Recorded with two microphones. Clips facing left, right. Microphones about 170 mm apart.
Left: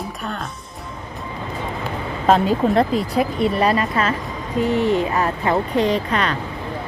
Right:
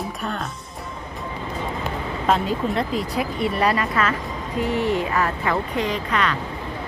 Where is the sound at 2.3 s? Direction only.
35° left (ahead or behind).